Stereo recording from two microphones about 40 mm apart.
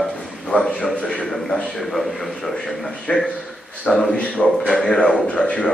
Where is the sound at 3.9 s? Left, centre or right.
Centre.